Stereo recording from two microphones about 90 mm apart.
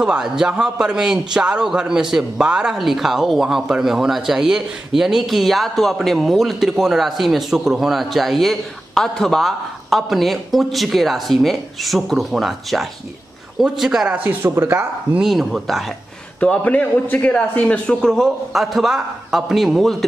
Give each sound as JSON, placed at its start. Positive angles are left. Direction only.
{"t": 0.0, "sound": "a man's voice", "side_deg": -5}
{"t": 15.1, "sound": "a man's voice", "side_deg": -5}
{"t": 16.3, "sound": "a man's voice", "side_deg": 15}